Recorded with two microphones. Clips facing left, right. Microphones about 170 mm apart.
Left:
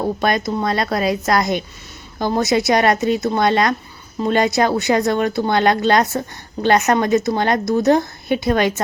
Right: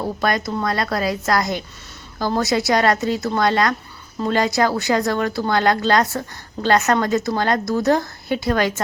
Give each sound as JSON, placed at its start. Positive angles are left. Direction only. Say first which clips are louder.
{"t": 0.0, "sound": "speech", "louder": "left 3 dB", "side_deg": 20}